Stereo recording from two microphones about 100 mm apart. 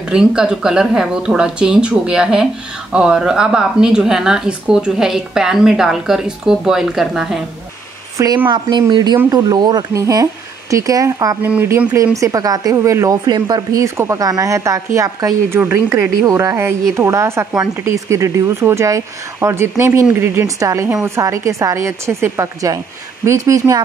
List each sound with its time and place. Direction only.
0.1 s speech: 5° right (ahead or behind)
8.5 s speech: 50° right (ahead or behind)
9.9 s speech: 35° right (ahead or behind)
11.4 s speech: 15° right (ahead or behind)
12.2 s a woman's voice: 35° right (ahead or behind)